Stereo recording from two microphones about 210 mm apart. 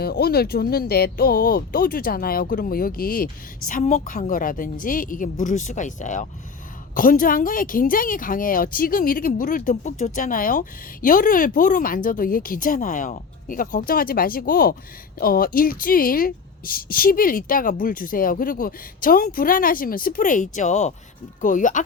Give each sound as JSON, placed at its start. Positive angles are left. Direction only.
{"t": 0.0, "sound": "speech", "side_deg": 45}